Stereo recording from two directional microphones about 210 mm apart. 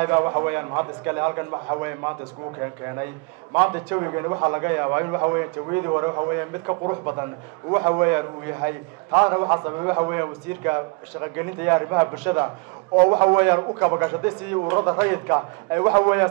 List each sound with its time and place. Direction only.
0.0 s a man's voice: 15° right (ahead or behind)